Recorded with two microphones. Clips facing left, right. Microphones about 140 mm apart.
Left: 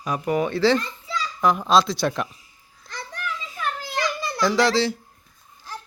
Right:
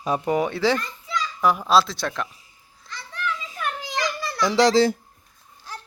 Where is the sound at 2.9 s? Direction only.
50° left (ahead or behind).